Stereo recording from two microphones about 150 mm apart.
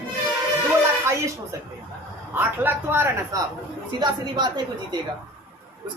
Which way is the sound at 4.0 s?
30° right (ahead or behind).